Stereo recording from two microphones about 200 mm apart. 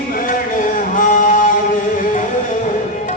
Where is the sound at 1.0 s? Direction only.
40° left (ahead or behind).